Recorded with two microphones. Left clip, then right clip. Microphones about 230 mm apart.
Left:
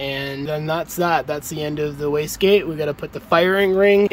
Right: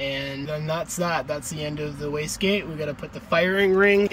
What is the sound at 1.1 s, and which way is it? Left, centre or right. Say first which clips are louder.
Speech: left 6 dB; centre.